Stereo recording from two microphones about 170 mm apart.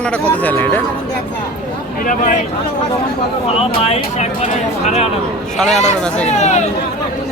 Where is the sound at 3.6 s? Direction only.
40° left (ahead or behind).